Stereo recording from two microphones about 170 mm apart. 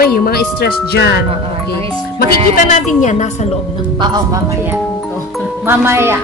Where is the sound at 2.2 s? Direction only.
45° left (ahead or behind).